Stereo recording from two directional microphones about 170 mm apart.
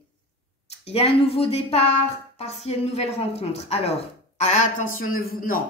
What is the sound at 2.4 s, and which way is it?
A woman's voice, 40° left (ahead or behind).